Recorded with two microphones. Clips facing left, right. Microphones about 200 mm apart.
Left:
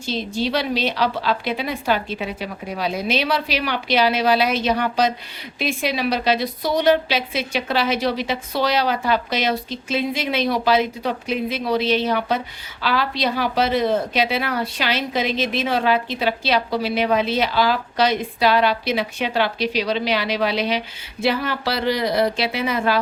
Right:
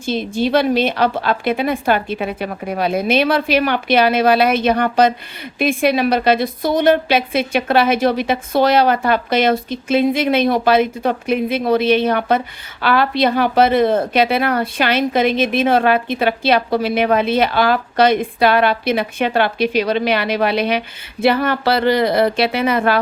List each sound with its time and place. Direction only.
0.0 s a woman's voice: 55° right (ahead or behind)